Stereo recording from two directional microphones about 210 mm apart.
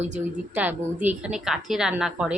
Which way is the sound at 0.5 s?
10° right (ahead or behind).